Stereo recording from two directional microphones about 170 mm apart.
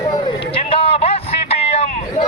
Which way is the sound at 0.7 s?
35° left (ahead or behind).